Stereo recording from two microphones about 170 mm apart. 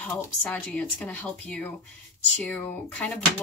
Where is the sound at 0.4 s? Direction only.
5° left (ahead or behind).